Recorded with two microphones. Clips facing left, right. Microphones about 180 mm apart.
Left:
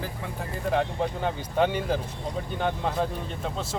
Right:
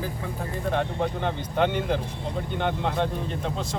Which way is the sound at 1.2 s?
5° left (ahead or behind).